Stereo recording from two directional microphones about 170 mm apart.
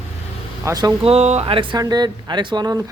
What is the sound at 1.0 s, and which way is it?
Speech, 40° right (ahead or behind).